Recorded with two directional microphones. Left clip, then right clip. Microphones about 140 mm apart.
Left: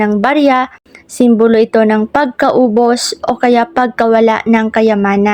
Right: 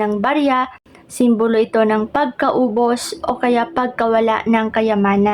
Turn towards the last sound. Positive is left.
turn(degrees=30)  # may be behind; listen again after turning